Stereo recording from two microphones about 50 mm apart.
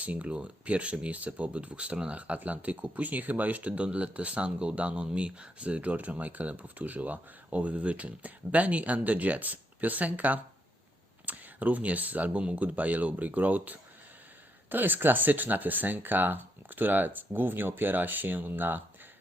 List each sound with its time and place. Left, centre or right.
0.0 s speech: right